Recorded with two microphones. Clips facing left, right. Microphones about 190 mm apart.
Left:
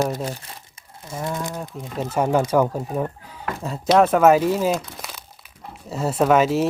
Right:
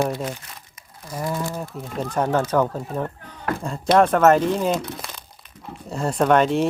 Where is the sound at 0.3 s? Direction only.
30° left (ahead or behind).